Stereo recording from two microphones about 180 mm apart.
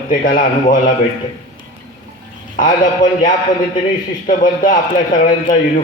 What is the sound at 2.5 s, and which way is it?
Speech, 45° left (ahead or behind).